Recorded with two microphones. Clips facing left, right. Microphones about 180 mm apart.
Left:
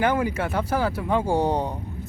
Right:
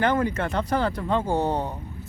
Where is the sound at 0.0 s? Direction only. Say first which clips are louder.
Even; 10° left (ahead or behind).